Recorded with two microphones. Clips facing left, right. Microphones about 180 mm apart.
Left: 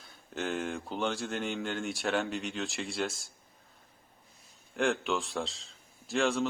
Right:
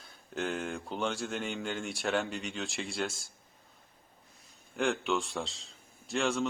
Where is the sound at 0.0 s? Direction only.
Centre (ahead or behind).